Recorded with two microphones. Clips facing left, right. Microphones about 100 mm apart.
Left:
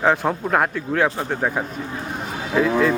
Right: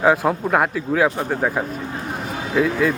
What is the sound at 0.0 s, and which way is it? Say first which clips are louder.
Speech: right 2 dB; 5° right (ahead or behind).